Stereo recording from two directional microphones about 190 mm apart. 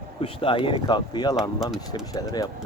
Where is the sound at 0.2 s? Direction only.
30° left (ahead or behind).